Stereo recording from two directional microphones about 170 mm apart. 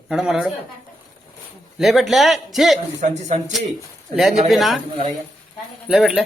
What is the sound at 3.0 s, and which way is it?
Speech, 45° right (ahead or behind).